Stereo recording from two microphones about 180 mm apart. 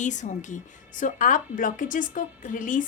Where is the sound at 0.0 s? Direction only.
40° left (ahead or behind).